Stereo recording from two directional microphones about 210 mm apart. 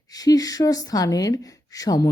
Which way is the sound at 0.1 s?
15° left (ahead or behind).